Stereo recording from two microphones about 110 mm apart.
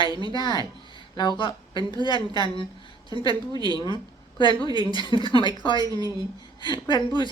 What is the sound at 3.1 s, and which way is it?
A woman's voice, 50° left (ahead or behind).